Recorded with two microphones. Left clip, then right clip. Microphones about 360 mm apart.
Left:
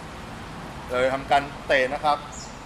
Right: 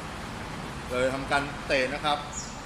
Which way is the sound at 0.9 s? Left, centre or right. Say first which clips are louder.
Left 5 dB; left.